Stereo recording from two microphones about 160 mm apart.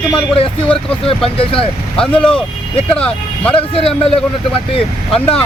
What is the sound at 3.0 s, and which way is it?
Speech, 5° left (ahead or behind).